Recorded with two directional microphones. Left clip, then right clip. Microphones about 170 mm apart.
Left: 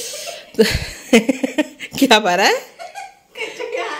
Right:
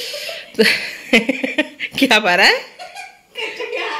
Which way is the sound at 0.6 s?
35° left (ahead or behind).